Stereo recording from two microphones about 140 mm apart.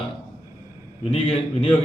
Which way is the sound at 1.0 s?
45° left (ahead or behind).